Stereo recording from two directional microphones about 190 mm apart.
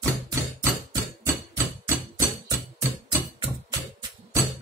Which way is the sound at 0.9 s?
15° right (ahead or behind).